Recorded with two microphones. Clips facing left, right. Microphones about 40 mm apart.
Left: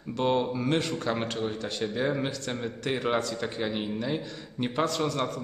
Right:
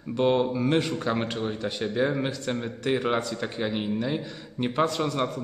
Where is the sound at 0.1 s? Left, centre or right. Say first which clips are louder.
Right 3 dB; centre.